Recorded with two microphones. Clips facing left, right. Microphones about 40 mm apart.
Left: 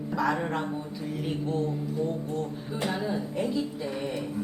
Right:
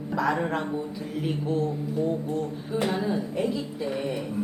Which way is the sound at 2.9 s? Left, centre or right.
Centre.